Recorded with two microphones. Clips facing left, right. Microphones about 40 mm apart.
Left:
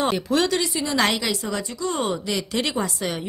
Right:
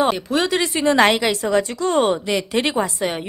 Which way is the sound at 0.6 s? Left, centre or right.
Right.